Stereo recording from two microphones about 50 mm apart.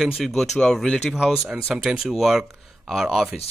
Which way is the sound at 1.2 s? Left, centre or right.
Centre.